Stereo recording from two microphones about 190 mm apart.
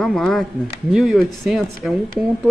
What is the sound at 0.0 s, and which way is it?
Speech, centre (ahead or behind).